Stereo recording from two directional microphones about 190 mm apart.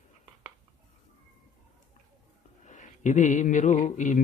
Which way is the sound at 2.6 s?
40° left (ahead or behind).